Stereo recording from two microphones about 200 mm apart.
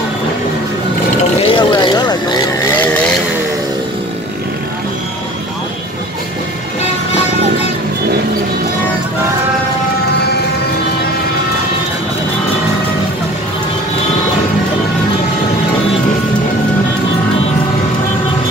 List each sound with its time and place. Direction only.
1.5 s vehicle: 25° left (ahead or behind)
2.7 s vehicle: 10° left (ahead or behind)